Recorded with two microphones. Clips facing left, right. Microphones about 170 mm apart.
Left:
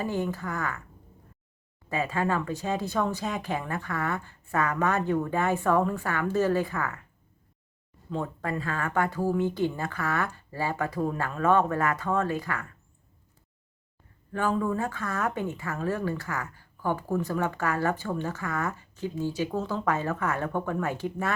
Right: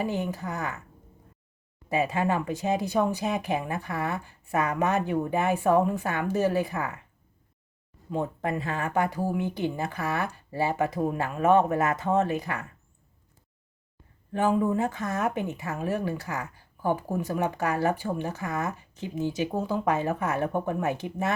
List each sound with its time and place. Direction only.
0.0 s a woman's voice: 15° right (ahead or behind)
1.9 s speech: 15° right (ahead or behind)
8.1 s speech: 20° right (ahead or behind)
14.3 s speech: 20° right (ahead or behind)